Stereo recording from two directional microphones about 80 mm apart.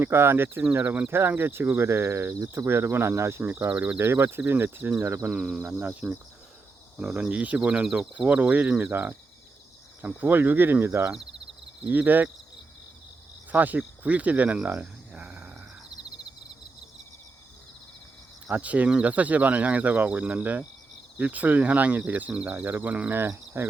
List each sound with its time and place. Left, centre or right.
0.0 s speech: right
7.0 s speech: centre
7.3 s speech: centre
10.2 s speech: right
13.5 s speech: right
18.5 s speech: centre
22.5 s speech: right